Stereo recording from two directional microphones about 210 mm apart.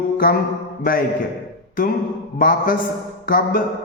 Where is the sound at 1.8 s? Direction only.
40° left (ahead or behind).